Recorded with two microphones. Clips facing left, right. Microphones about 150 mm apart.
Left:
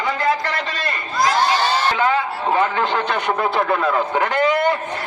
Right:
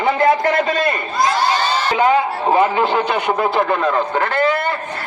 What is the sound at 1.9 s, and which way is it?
A man's voice, 15° right (ahead or behind).